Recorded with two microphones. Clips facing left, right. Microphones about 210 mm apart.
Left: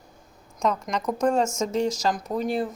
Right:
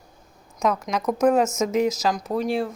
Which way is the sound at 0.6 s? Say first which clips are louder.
Right 2 dB; 5° right (ahead or behind).